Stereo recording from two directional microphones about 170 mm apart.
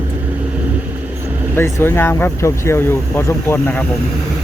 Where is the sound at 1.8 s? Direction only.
15° left (ahead or behind).